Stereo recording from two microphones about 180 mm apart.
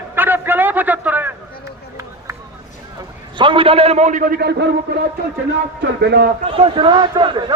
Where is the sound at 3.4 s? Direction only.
30° right (ahead or behind); by 4.6 s 60° right (ahead or behind).